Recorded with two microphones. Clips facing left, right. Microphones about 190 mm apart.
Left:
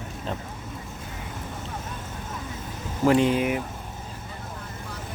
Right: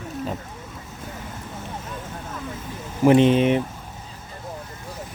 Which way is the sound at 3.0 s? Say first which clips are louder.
Right 5 dB; 20° right (ahead or behind).